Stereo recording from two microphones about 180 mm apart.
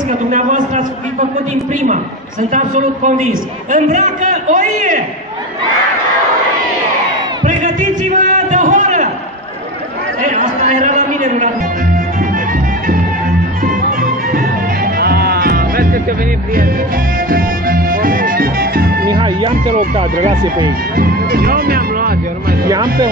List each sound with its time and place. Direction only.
0.3 s a man's voice: 45° right (ahead or behind)
2.5 s a man's voice: 45° right (ahead or behind)
7.4 s a sound: 45° right (ahead or behind)
10.2 s a sound: 40° right (ahead or behind)
15.0 s music: 60° right (ahead or behind)
19.0 s speech: 25° right (ahead or behind)
20.0 s speech: 40° right (ahead or behind)
20.9 s speech: 55° right (ahead or behind)